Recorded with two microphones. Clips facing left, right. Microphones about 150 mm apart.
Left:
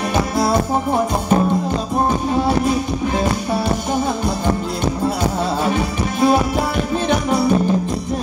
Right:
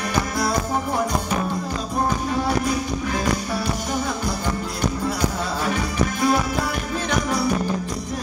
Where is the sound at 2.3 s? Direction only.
25° left (ahead or behind).